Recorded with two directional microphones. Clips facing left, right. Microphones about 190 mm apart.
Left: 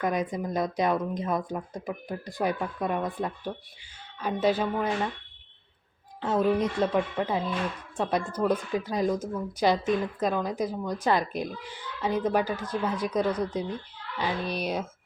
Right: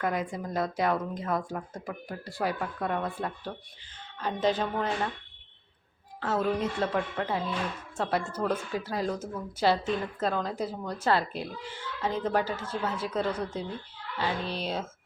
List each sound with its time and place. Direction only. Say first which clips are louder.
0.0 s a woman's voice: left 3 dB; 20° left (ahead or behind)
6.1 s a woman's voice: left 4 dB; 20° left (ahead or behind)